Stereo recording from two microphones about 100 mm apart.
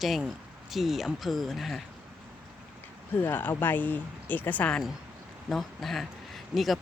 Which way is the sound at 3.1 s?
20° left (ahead or behind).